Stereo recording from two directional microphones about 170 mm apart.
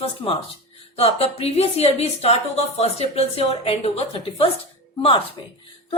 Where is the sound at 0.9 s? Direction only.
35° left (ahead or behind).